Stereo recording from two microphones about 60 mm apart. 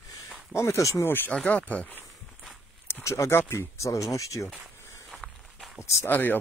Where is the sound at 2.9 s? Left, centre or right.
Left.